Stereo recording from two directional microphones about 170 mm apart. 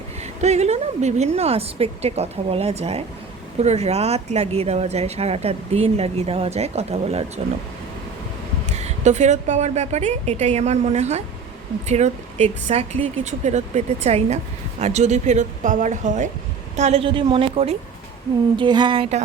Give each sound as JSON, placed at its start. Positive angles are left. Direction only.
{"t": 0.2, "sound": "speech", "side_deg": -40}
{"t": 8.7, "sound": "a woman's voice", "side_deg": -40}
{"t": 18.5, "sound": "speech", "side_deg": -25}